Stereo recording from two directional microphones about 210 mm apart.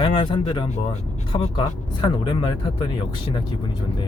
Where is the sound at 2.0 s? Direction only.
20° left (ahead or behind).